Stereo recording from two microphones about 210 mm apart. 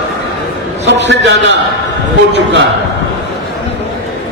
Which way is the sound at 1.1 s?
55° right (ahead or behind).